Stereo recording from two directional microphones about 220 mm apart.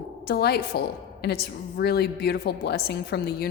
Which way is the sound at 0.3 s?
45° left (ahead or behind).